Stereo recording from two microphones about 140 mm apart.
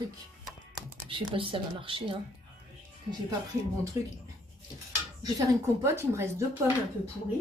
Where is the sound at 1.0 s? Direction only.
35° right (ahead or behind).